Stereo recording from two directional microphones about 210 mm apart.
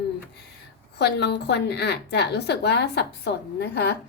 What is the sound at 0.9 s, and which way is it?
A woman's voice, 50° left (ahead or behind).